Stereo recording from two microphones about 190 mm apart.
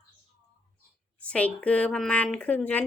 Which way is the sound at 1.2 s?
5° left (ahead or behind).